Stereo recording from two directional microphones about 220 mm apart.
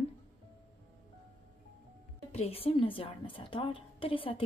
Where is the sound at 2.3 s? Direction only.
25° left (ahead or behind).